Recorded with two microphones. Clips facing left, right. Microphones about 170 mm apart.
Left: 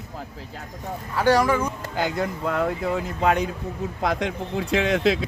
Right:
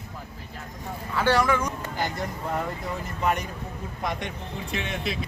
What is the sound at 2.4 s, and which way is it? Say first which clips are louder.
Speech: left 6 dB; 80° left.